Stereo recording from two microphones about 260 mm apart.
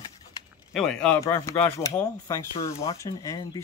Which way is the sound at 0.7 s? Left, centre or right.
Centre.